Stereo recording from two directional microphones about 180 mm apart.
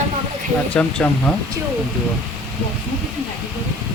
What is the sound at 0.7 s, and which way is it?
Speech, 5° left (ahead or behind).